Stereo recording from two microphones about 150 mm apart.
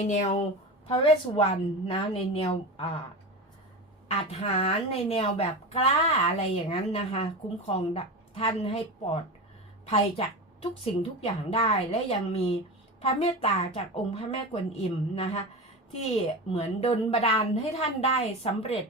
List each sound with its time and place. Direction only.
0.0 s a woman's voice: 50° left (ahead or behind)
0.9 s a woman's voice: 40° left (ahead or behind)
4.1 s a woman's voice: 45° left (ahead or behind)
16.5 s a woman's voice: 40° left (ahead or behind)